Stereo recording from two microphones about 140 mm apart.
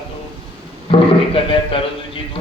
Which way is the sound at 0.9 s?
40° left (ahead or behind).